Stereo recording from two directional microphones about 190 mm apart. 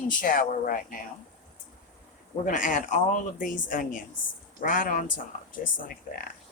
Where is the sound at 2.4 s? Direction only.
45° left (ahead or behind).